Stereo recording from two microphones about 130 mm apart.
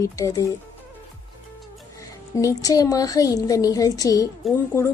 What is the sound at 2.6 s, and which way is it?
A woman's voice, 30° left (ahead or behind).